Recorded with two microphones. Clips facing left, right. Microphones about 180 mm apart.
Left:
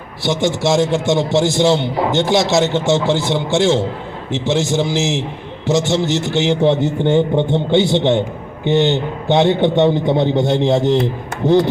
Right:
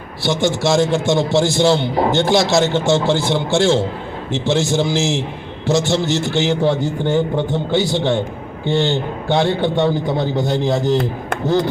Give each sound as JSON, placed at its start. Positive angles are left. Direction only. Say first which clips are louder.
{"t": 0.3, "sound": "a man's voice", "louder": "left 1 dB", "side_deg": 20}